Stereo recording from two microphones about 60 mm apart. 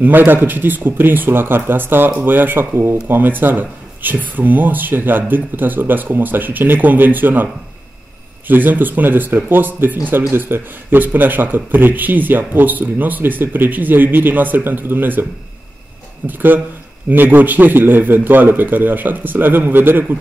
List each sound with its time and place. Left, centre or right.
0.0 s speech: right
8.5 s speech: right
16.3 s speech: right